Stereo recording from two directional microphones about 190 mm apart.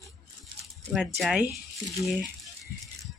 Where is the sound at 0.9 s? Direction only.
Centre (ahead or behind).